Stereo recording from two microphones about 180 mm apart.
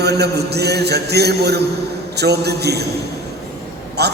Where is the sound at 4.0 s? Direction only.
65° right (ahead or behind).